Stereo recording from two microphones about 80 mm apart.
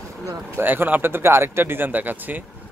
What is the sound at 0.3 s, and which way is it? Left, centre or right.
Speech, right.